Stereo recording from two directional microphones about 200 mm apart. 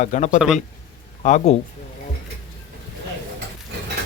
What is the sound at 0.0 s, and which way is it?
Speech, 35° left (ahead or behind).